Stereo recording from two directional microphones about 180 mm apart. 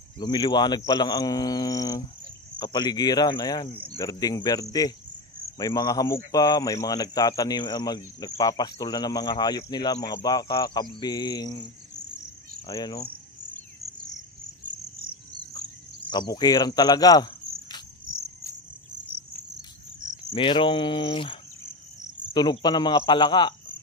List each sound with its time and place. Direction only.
0.2 s speech: 25° left (ahead or behind)
16.1 s speech: 25° left (ahead or behind)
20.3 s speech: 30° left (ahead or behind)